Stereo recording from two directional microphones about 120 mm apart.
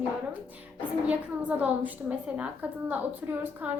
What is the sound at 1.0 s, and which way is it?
A woman's voice, 10° right (ahead or behind).